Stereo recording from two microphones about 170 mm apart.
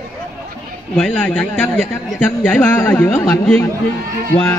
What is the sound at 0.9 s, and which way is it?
A man's voice, 5° left (ahead or behind).